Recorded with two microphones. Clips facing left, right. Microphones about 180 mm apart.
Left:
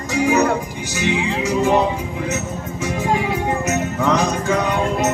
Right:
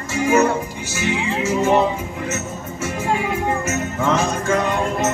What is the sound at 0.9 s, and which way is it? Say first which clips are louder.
Music: left 2 dB; 15° left (ahead or behind).